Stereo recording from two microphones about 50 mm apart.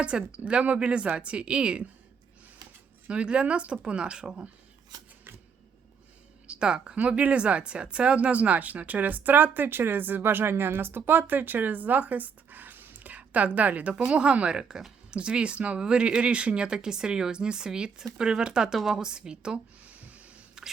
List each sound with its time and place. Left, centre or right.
0.0 s speech: right
3.1 s speech: right
6.5 s speech: centre
6.9 s speech: right
19.8 s a sound: right
20.6 s a sound: centre